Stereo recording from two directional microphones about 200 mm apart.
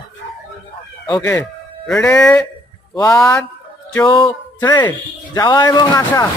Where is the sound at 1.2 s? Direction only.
5° left (ahead or behind).